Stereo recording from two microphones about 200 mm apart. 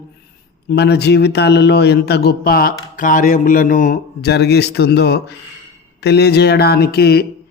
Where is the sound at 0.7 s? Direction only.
55° left (ahead or behind).